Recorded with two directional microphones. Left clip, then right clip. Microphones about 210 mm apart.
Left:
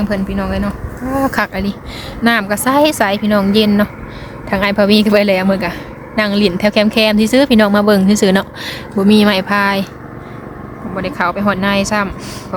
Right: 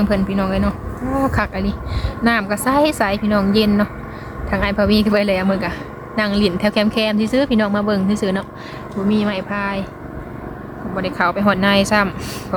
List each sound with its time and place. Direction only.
0.0 s a woman's voice: centre (ahead or behind); by 9.8 s 35° left (ahead or behind)
10.9 s speech: 10° left (ahead or behind)